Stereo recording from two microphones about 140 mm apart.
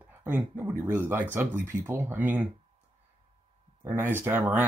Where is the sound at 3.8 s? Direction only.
15° right (ahead or behind).